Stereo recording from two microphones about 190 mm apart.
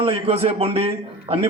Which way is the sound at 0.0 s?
30° right (ahead or behind).